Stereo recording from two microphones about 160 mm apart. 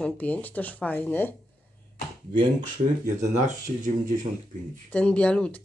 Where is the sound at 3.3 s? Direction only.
50° right (ahead or behind).